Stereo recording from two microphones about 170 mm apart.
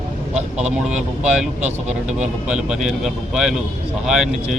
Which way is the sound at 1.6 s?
45° right (ahead or behind).